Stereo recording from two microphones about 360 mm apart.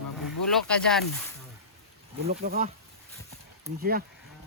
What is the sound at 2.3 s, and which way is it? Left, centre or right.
Speech, right.